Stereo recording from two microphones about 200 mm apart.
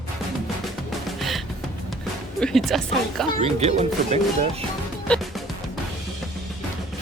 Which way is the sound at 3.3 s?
35° right (ahead or behind).